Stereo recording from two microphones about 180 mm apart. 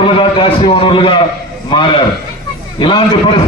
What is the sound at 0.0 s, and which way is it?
A man's voice, 30° left (ahead or behind).